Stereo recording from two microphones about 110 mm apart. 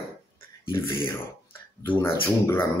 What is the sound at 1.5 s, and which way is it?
Speech, 20° left (ahead or behind).